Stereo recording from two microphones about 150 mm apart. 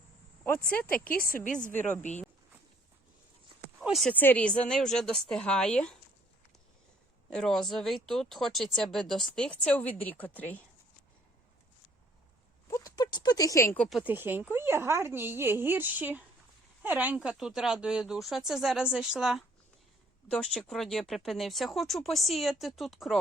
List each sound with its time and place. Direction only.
0.7 s speech: 10° left (ahead or behind)
0.9 s speech: 75° left (ahead or behind); by 1.7 s 55° left (ahead or behind)
3.8 s a sound: centre (ahead or behind)
4.1 s speech: 10° left (ahead or behind)
7.3 s speech: 5° left (ahead or behind)
12.6 s a sound: 25° left (ahead or behind)
13.7 s speech: 5° left (ahead or behind)
14.0 s speech: 15° right (ahead or behind)